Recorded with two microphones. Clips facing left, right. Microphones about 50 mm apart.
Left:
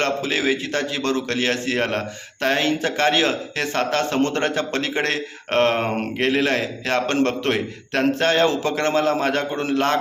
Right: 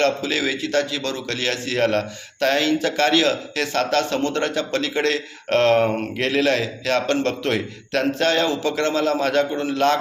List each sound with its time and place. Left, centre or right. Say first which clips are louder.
0.0 s a man's voice: right 1 dB; left
4.2 s a man's voice: left 1 dB; left